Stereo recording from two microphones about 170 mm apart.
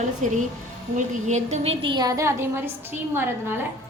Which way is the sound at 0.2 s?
45° right (ahead or behind).